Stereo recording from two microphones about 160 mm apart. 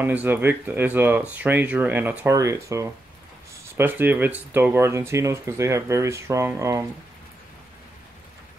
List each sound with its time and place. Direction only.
0.0 s speech: 10° right (ahead or behind)